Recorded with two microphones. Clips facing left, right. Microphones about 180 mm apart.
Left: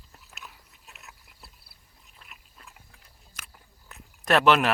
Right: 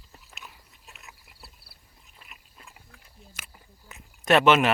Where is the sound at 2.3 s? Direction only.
Centre (ahead or behind).